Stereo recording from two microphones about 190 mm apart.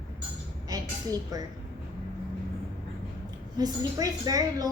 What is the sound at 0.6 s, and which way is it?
Speech, 20° right (ahead or behind).